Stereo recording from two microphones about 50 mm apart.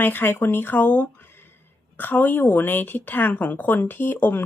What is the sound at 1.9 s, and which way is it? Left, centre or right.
A woman's voice, left.